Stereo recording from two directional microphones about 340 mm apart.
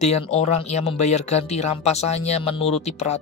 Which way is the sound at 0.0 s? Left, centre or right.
Centre.